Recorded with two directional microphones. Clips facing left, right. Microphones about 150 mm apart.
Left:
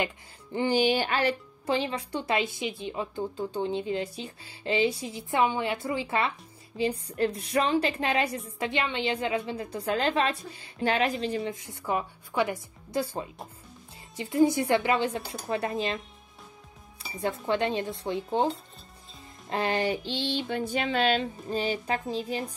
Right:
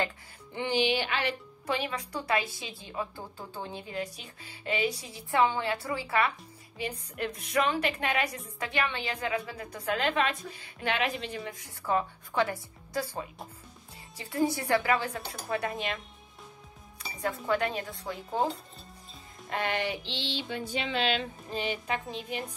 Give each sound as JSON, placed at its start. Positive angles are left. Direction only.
{"t": 0.6, "sound": "a woman's voice", "side_deg": 40}
{"t": 1.7, "sound": "a woman's voice", "side_deg": 30}
{"t": 11.8, "sound": "a woman's voice", "side_deg": 15}
{"t": 17.2, "sound": "a woman's voice", "side_deg": 25}
{"t": 19.5, "sound": "a sound", "side_deg": 35}